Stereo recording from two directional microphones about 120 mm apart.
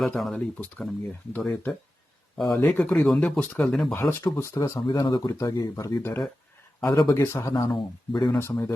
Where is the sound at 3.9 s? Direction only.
20° left (ahead or behind).